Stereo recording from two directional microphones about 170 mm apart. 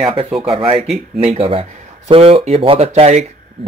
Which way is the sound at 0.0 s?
30° right (ahead or behind).